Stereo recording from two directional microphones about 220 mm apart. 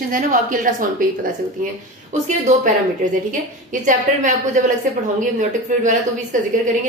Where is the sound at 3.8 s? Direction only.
35° right (ahead or behind).